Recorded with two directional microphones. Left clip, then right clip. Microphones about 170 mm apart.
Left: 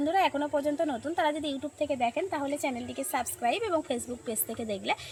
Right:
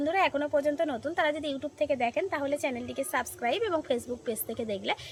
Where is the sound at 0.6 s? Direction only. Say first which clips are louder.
Right 1 dB; 35° right (ahead or behind).